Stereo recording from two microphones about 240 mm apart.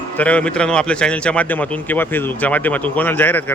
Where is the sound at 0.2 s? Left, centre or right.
Centre.